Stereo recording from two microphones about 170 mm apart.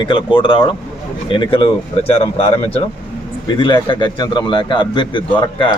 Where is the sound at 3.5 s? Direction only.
30° left (ahead or behind).